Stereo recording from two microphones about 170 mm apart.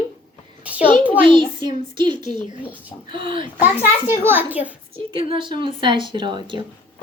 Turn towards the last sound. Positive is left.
turn(degrees=-30)  # may be behind; listen again after turning